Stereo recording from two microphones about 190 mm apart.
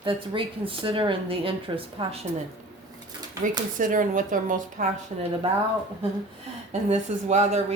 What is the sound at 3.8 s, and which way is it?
A woman's voice, 45° right (ahead or behind).